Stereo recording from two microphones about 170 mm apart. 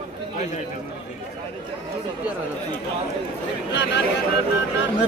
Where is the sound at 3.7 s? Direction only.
90° left.